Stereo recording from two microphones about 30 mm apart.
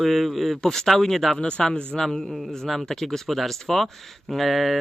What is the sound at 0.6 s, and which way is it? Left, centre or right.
Speech, centre.